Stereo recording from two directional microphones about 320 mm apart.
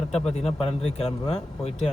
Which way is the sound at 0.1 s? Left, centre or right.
Centre.